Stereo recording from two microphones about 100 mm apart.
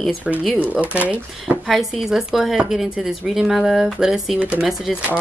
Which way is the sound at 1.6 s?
Centre (ahead or behind).